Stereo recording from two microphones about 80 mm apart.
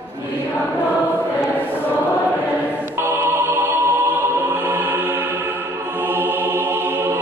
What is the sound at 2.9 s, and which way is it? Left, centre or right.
Music, right.